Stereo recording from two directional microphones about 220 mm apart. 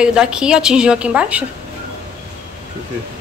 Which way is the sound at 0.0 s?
5° right (ahead or behind).